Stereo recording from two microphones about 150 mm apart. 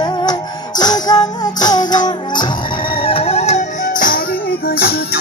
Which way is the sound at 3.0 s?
40° left (ahead or behind).